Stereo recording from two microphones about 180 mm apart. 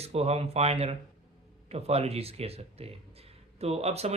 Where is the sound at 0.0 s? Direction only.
35° right (ahead or behind).